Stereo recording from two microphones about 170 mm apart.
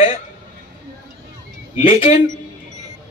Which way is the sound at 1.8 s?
35° left (ahead or behind).